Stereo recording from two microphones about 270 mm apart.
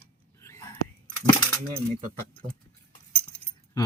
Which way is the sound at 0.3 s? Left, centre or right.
Centre.